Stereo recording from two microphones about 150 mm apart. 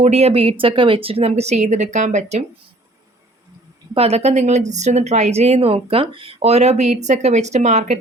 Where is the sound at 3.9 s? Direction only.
45° right (ahead or behind).